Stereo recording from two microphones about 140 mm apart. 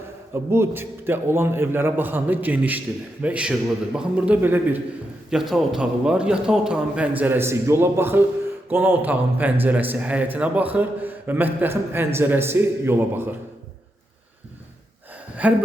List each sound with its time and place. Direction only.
0.5 s speech: 15° right (ahead or behind)
5.3 s speech: centre (ahead or behind)
15.4 s speech: 10° right (ahead or behind)